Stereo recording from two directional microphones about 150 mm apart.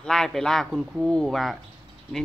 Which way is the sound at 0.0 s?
5° left (ahead or behind).